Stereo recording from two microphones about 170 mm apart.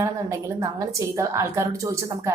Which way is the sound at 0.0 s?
15° right (ahead or behind).